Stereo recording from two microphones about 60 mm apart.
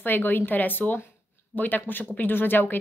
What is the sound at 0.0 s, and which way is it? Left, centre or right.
Speech, left.